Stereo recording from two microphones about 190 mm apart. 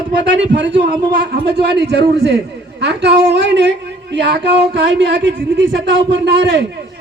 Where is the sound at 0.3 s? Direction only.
70° right (ahead or behind).